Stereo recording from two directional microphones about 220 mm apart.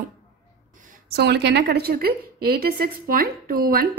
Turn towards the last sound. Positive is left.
turn(degrees=-40)  # may be behind; listen again after turning